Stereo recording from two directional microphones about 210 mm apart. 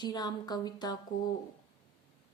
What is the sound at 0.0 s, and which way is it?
Speech, 20° left (ahead or behind).